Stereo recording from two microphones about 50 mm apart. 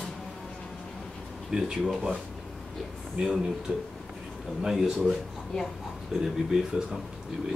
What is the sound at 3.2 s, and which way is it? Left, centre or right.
Speech, centre.